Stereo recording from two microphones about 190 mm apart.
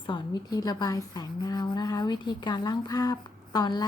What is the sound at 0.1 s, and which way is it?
A woman's voice, 20° left (ahead or behind).